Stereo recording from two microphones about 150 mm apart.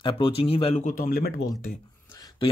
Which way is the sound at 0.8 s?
65° left (ahead or behind).